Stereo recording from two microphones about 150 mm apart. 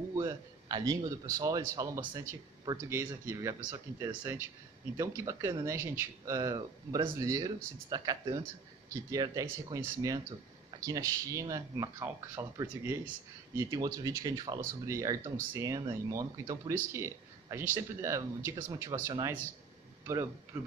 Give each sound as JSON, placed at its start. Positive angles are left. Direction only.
{"t": 0.1, "sound": "a sound", "side_deg": -20}
{"t": 1.3, "sound": "speech", "side_deg": -25}
{"t": 20.5, "sound": "speech", "side_deg": -15}